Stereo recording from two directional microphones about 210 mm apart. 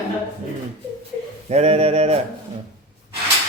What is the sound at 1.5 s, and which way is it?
Speech, 30° right (ahead or behind).